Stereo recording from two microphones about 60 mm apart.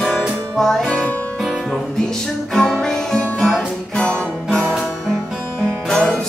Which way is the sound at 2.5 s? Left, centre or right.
Centre.